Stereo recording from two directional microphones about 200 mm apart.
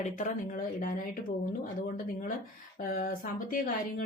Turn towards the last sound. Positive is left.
turn(degrees=45)  # may be behind; listen again after turning